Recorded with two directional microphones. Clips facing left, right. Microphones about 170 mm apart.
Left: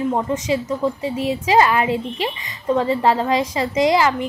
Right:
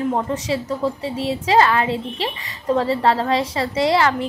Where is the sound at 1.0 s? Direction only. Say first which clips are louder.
Left 2 dB; 30° right (ahead or behind).